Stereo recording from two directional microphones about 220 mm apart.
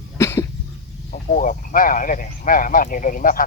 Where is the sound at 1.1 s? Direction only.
35° left (ahead or behind).